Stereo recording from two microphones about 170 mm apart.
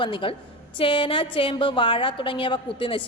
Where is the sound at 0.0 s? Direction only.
30° left (ahead or behind).